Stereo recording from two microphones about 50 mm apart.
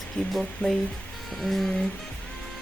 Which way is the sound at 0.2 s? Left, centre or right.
Left.